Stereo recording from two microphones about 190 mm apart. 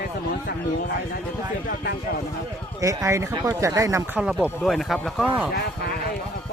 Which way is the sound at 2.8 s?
15° right (ahead or behind).